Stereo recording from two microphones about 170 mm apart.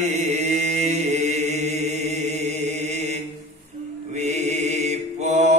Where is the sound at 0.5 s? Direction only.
40° right (ahead or behind).